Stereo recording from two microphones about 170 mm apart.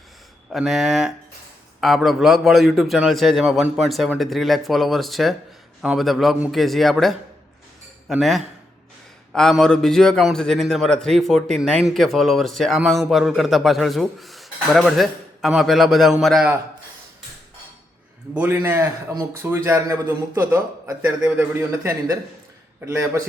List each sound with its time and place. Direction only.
0.5 s a man's voice: centre (ahead or behind)
18.3 s a man's voice: 15° right (ahead or behind)